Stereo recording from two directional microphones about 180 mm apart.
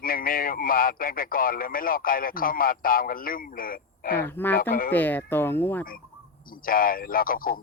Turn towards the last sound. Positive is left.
turn(degrees=50)  # may be behind; listen again after turning